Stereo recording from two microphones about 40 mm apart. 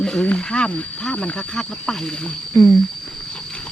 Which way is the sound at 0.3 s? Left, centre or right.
Left.